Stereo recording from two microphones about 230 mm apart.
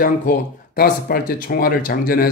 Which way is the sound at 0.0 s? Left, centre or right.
Left.